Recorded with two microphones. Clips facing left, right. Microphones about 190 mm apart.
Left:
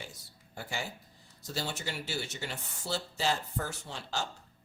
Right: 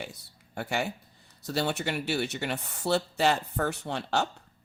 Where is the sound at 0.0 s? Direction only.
65° right (ahead or behind).